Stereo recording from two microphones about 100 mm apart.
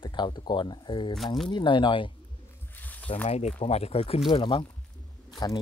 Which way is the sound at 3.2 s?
90° left.